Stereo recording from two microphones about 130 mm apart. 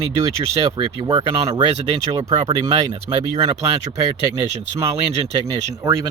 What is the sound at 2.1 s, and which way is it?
Speech, 30° right (ahead or behind).